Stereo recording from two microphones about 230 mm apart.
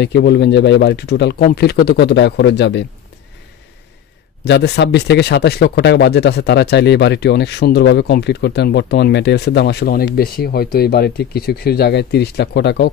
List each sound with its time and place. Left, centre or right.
0.0 s speech: left
4.5 s speech: left